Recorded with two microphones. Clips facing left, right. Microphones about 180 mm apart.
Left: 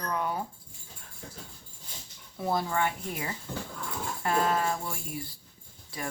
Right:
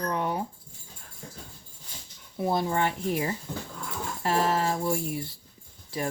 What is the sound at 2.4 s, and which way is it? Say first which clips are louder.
Speech: right 2 dB; 25° right (ahead or behind).